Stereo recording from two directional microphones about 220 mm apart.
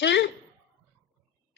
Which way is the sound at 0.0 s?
55° left (ahead or behind).